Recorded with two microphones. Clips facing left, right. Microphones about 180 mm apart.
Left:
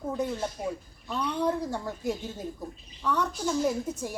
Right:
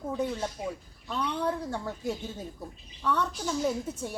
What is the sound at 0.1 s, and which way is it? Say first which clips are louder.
A woman's voice: even; 5° left (ahead or behind).